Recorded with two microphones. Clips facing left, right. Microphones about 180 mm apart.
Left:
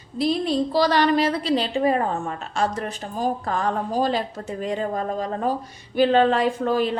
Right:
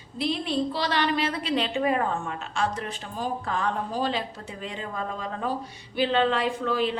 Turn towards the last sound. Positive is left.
turn(degrees=45)  # may be behind; listen again after turning